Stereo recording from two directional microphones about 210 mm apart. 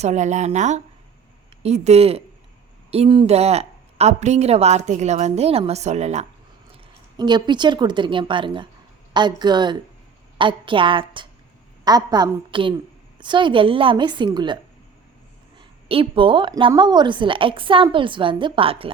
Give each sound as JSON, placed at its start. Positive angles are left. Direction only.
{"t": 0.0, "sound": "a woman's voice", "side_deg": -35}
{"t": 7.2, "sound": "a woman's voice", "side_deg": -20}